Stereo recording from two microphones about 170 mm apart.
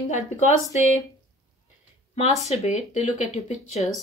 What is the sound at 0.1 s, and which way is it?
Speech, 45° left (ahead or behind).